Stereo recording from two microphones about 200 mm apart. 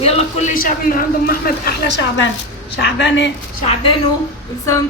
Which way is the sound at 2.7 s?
60° left (ahead or behind).